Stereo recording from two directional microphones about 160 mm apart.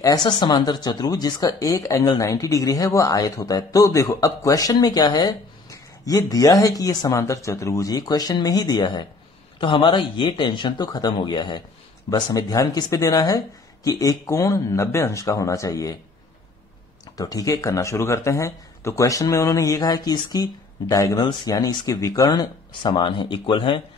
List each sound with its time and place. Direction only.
0.0 s speech: 25° left (ahead or behind)
17.2 s speech: 20° left (ahead or behind)